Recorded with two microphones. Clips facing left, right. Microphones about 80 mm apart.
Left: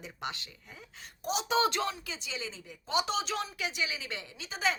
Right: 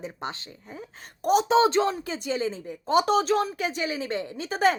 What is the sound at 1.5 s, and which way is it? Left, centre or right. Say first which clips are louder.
A woman's voice: right 4 dB; right.